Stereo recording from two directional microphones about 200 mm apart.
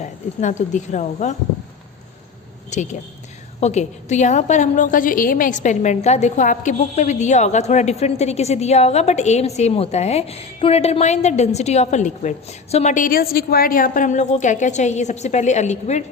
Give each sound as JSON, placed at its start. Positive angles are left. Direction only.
{"t": 0.0, "sound": "a woman's voice", "side_deg": 35}
{"t": 2.7, "sound": "a woman's voice", "side_deg": 35}